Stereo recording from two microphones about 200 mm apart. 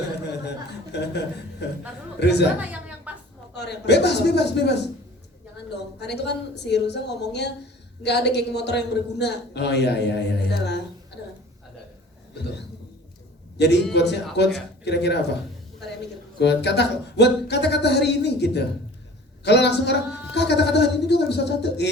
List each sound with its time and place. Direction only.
1.6 s a man's voice: 60° left (ahead or behind)
3.1 s a sound: 5° right (ahead or behind)
3.5 s a man's voice: 55° left (ahead or behind)
13.6 s a man's voice: 60° left (ahead or behind)
16.4 s a man's voice: 60° left (ahead or behind)